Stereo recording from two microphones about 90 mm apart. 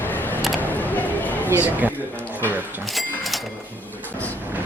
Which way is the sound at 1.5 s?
20° right (ahead or behind).